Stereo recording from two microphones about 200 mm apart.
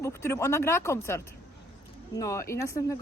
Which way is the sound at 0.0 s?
15° left (ahead or behind).